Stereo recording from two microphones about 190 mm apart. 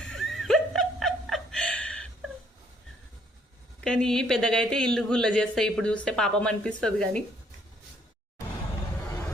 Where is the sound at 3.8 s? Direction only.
5° left (ahead or behind).